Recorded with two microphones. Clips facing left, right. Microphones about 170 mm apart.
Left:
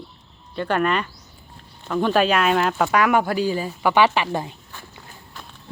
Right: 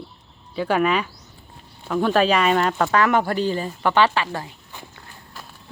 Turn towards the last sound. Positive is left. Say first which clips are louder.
# left 2 dB
turn(degrees=20)  # may be behind; listen again after turning